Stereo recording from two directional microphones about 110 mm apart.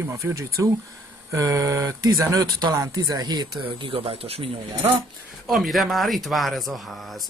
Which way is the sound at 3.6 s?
55° right (ahead or behind).